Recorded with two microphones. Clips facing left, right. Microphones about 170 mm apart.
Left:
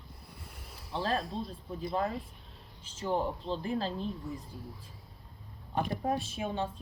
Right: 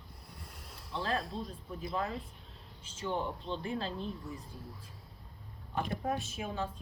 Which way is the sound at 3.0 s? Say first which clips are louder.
Left 4 dB; 35° left (ahead or behind).